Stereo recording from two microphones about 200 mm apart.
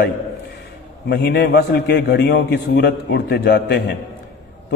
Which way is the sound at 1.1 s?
55° left (ahead or behind).